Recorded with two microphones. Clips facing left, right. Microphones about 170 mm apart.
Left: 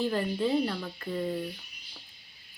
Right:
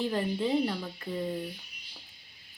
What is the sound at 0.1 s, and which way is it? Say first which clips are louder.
Speech: left 1 dB; 15° right (ahead or behind).